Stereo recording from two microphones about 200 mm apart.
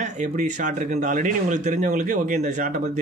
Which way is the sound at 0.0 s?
40° right (ahead or behind).